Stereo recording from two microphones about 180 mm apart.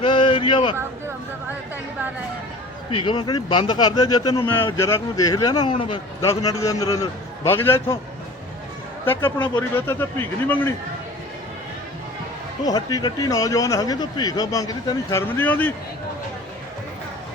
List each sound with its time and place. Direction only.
0.0 s a sound: 25° left (ahead or behind)
2.9 s a man's voice: 25° left (ahead or behind)
9.6 s a man's voice: 10° left (ahead or behind)
12.6 s speech: 20° left (ahead or behind)